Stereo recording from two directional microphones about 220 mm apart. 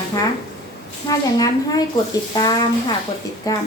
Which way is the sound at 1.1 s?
15° left (ahead or behind).